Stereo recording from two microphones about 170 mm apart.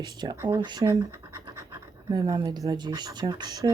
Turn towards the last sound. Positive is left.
turn(degrees=-20)  # may be behind; listen again after turning